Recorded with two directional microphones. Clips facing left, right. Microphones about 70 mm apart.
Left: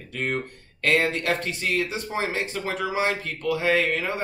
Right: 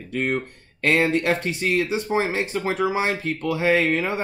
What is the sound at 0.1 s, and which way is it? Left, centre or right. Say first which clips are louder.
Speech: right 4 dB; right.